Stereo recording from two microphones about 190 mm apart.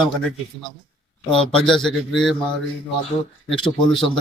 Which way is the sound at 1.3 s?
5° left (ahead or behind).